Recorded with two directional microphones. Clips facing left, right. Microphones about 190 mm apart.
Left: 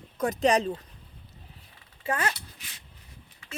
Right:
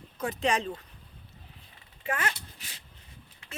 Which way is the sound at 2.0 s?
35° left (ahead or behind).